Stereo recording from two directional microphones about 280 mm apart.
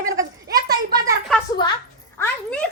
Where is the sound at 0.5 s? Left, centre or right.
Right.